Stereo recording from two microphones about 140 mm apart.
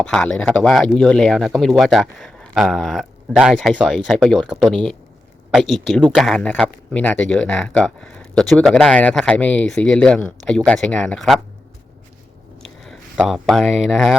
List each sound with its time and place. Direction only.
0.0 s speech: 5° left (ahead or behind)
12.8 s speech: centre (ahead or behind)